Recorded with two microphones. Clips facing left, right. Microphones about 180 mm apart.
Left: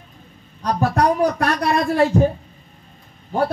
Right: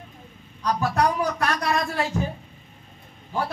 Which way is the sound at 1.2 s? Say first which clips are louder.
Left 6 dB; 55° left (ahead or behind).